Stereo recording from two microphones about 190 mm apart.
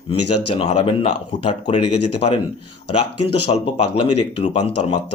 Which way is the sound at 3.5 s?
30° left (ahead or behind).